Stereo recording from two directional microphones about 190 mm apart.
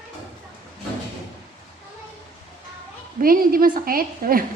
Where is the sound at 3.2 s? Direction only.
50° right (ahead or behind).